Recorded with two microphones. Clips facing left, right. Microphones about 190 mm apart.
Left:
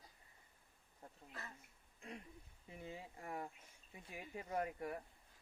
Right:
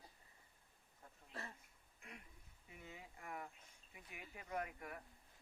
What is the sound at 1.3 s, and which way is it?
Speech, 30° right (ahead or behind).